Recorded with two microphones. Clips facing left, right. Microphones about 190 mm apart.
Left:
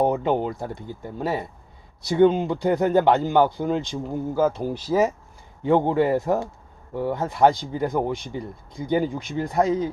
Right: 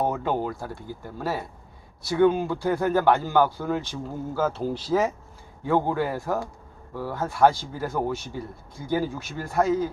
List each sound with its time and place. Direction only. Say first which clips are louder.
0.0 s speech: left 4 dB; 20° left (ahead or behind)
5.6 s speech: left 5 dB; 20° left (ahead or behind)